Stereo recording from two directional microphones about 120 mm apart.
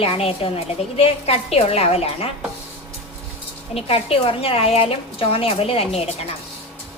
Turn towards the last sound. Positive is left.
turn(degrees=60)  # may be behind; listen again after turning